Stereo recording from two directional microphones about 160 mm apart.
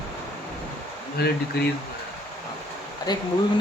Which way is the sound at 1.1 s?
90° left.